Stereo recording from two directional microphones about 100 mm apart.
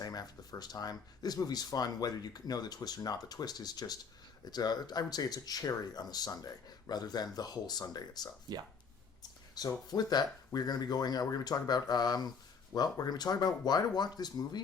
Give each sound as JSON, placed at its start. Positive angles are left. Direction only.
{"t": 0.0, "sound": "speech", "side_deg": 40}
{"t": 8.5, "sound": "speech", "side_deg": -45}
{"t": 9.6, "sound": "speech", "side_deg": 40}